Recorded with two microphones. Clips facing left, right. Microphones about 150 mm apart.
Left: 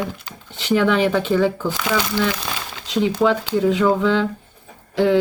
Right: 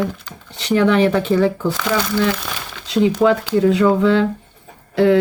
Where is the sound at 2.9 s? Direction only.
Centre (ahead or behind).